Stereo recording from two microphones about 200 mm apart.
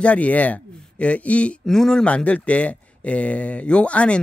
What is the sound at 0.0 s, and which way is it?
Speech, 5° left (ahead or behind).